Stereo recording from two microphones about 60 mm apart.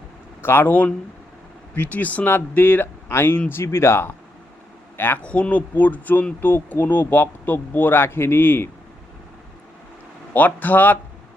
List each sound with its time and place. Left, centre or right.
0.4 s speech: left
0.7 s speech: left
5.2 s speech: left
10.3 s speech: left